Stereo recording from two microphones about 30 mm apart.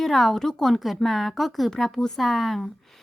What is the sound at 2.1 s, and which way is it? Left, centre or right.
Speech, centre.